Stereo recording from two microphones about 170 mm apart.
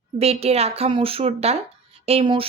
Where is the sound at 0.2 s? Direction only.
35° right (ahead or behind).